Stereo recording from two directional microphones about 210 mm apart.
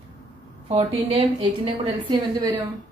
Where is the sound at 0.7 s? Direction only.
30° right (ahead or behind).